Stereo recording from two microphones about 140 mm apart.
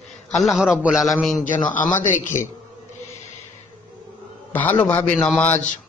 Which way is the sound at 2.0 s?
65° left (ahead or behind).